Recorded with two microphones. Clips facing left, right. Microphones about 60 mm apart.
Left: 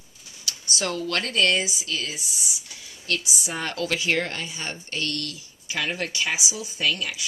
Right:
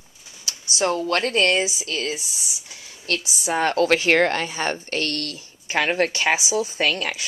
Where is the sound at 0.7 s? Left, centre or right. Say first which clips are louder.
Right 6 dB; right.